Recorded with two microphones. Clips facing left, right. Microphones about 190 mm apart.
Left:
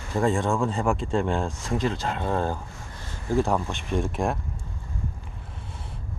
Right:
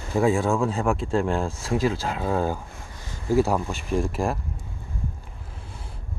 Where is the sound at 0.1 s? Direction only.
5° right (ahead or behind).